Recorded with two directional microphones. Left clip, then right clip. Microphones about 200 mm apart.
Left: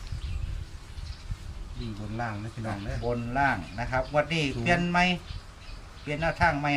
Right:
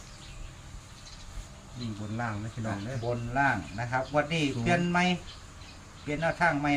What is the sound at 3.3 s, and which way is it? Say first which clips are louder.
Speech: even; 45° left (ahead or behind).